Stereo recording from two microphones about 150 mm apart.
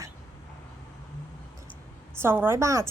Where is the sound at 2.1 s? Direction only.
15° right (ahead or behind).